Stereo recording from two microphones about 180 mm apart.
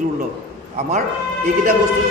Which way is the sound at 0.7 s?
40° right (ahead or behind).